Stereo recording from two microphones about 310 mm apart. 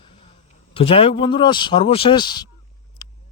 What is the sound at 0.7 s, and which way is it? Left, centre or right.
A man's voice, centre.